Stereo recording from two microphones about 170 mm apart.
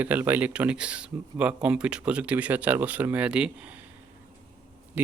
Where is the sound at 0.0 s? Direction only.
10° right (ahead or behind).